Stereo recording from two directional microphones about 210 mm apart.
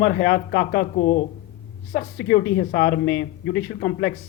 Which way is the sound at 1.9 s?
55° left (ahead or behind).